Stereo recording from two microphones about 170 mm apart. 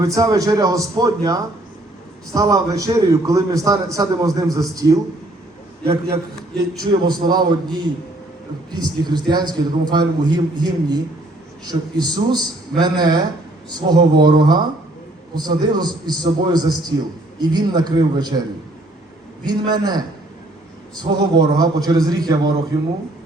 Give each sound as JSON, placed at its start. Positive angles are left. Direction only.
{"t": 0.0, "sound": "a man's voice", "side_deg": -20}
{"t": 6.8, "sound": "a man's voice", "side_deg": -25}
{"t": 19.5, "sound": "a man's voice", "side_deg": -25}